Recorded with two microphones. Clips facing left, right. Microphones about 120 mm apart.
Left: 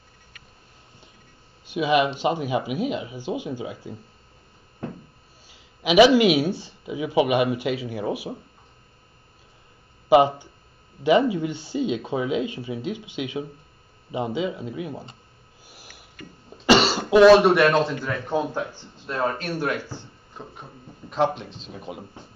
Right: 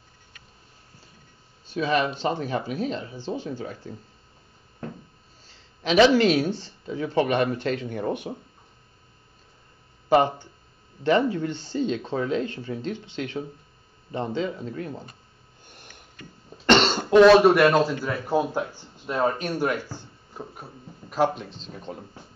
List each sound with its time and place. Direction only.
1.7 s speech: 10° left (ahead or behind)
5.5 s speech: 10° left (ahead or behind)
10.0 s speech: 10° left (ahead or behind)
15.6 s a sound: 5° left (ahead or behind)
16.6 s cough: 5° left (ahead or behind)
17.1 s speech: 5° left (ahead or behind)